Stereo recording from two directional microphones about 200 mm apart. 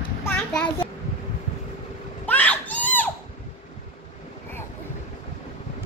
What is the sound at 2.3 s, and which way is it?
Children playing, 10° left (ahead or behind).